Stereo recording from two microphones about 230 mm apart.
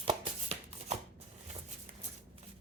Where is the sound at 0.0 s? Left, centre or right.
Right.